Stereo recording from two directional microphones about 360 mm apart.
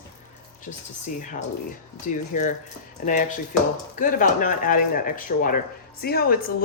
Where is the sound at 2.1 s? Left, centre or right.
Left.